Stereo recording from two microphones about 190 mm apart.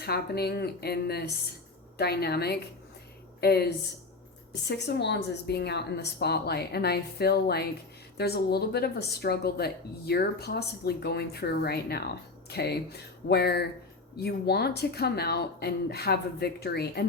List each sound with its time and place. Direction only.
0.0 s speech: 55° left (ahead or behind)
4.7 s speech: 60° left (ahead or behind)